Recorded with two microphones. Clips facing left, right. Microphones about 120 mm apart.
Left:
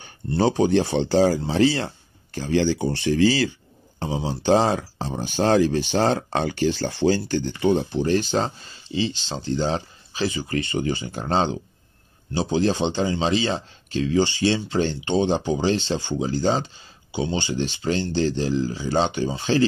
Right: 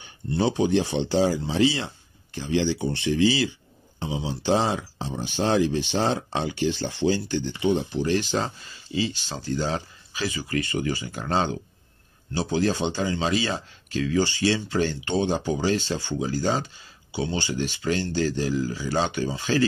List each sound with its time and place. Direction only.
0.0 s speech: 40° left (ahead or behind)
2.3 s speech: 40° left (ahead or behind)
7.9 s speech: 35° left (ahead or behind)